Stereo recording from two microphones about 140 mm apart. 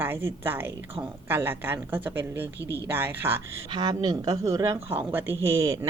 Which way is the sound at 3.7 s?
30° right (ahead or behind).